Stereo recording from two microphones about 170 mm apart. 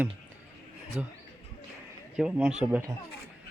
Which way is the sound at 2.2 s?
5° right (ahead or behind).